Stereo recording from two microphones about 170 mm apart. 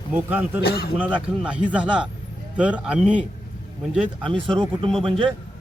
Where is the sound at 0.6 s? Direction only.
70° left (ahead or behind).